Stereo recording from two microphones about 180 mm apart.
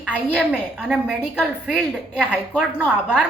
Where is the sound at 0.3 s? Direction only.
5° right (ahead or behind).